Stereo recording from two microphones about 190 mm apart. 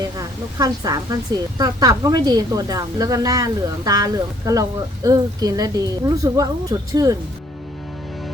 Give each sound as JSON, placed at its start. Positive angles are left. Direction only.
{"t": 0.0, "sound": "a woman's voice", "side_deg": -20}